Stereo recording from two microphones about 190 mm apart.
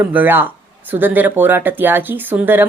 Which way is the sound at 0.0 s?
10° right (ahead or behind).